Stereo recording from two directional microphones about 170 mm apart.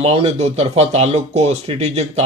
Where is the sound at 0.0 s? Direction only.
35° right (ahead or behind).